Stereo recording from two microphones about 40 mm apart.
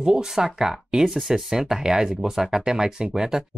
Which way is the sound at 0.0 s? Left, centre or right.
Centre.